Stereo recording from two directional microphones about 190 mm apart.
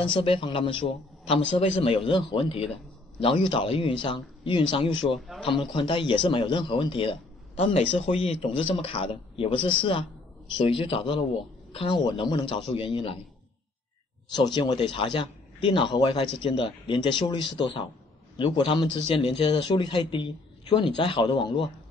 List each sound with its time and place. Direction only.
0.0 s a man's voice: 25° left (ahead or behind)
14.3 s a man's voice: 25° left (ahead or behind)